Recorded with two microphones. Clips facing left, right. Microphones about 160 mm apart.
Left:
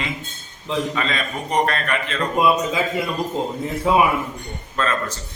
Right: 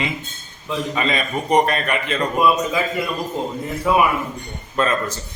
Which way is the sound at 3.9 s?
25° left (ahead or behind).